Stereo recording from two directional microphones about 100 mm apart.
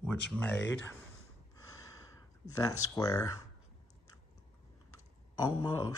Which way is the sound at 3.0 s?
35° left (ahead or behind).